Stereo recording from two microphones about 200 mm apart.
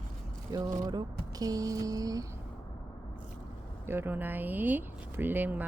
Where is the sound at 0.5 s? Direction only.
20° right (ahead or behind).